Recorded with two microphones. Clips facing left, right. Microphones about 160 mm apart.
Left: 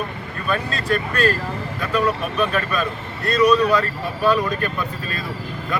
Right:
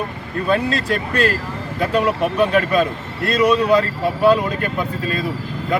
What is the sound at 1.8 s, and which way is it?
Speech, 25° right (ahead or behind).